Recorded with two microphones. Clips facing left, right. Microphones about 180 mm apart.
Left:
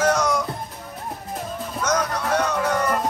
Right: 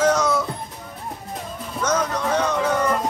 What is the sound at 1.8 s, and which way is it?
Music, 10° left (ahead or behind).